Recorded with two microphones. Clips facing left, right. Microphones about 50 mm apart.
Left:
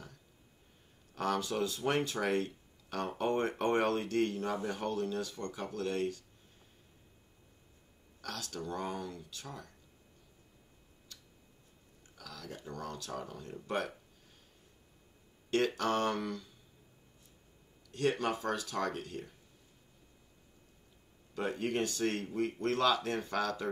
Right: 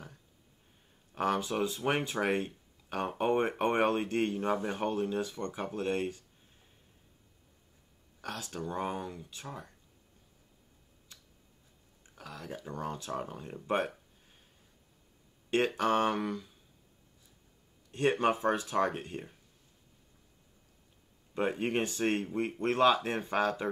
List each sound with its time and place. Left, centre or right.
1.1 s speech: right
8.2 s speech: right
11.1 s tick: centre
12.2 s a sound: right
12.5 s speech: right
15.5 s speech: centre
17.9 s speech: right
21.4 s speech: right